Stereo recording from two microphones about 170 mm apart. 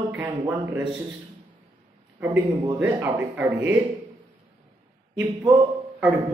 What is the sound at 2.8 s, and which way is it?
Speech, 10° right (ahead or behind).